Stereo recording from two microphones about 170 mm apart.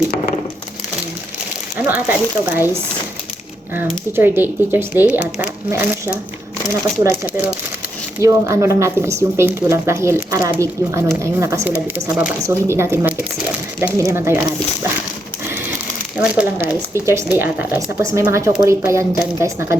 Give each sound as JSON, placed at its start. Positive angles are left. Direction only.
{"t": 1.9, "sound": "speech", "side_deg": -10}
{"t": 4.1, "sound": "speech", "side_deg": -10}
{"t": 16.1, "sound": "speech", "side_deg": -5}